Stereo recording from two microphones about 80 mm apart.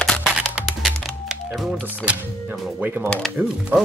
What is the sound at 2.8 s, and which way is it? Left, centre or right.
Speech, right.